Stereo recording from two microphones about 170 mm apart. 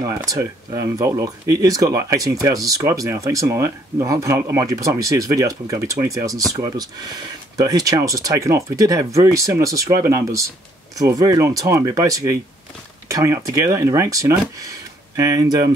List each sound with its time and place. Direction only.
0.0 s speech: 20° right (ahead or behind)